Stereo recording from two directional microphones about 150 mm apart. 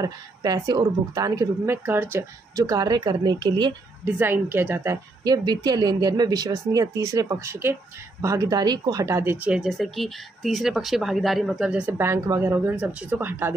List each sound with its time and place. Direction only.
0.0 s a woman's voice: 25° right (ahead or behind)
4.0 s a woman's voice: 15° right (ahead or behind)